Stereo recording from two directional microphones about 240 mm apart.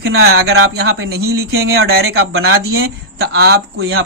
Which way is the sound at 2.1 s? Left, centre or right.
Right.